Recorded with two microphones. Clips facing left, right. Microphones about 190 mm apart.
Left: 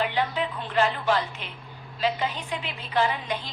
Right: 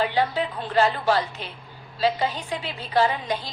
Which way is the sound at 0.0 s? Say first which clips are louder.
Right 3 dB; 35° right (ahead or behind).